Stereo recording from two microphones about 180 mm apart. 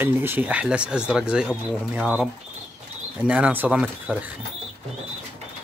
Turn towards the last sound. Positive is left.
turn(degrees=-10)  # may be behind; listen again after turning